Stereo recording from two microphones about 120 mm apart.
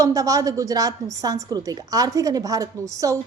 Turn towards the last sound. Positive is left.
turn(degrees=-25)  # may be behind; listen again after turning